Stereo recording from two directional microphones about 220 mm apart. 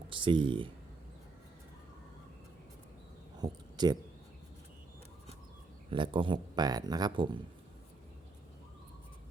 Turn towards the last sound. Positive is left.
turn(degrees=-20)  # may be behind; listen again after turning